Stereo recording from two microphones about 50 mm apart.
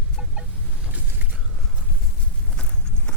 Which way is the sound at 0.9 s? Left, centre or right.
Right.